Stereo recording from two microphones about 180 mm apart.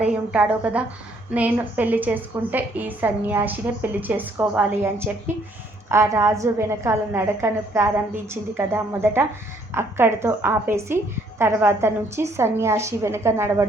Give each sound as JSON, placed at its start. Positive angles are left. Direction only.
{"t": 0.0, "sound": "a woman's voice", "side_deg": -5}